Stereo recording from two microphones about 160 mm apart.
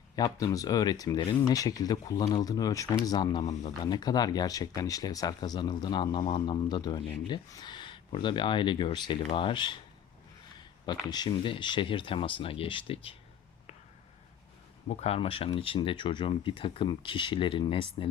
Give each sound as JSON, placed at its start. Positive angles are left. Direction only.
{"t": 0.2, "sound": "speech", "side_deg": 20}
{"t": 11.0, "sound": "speech", "side_deg": 25}
{"t": 14.8, "sound": "speech", "side_deg": 40}